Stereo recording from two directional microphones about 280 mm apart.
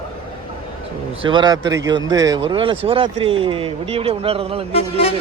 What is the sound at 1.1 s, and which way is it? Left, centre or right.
Speech, centre.